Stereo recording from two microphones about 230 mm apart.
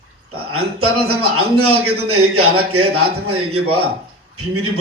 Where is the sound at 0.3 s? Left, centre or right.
Right.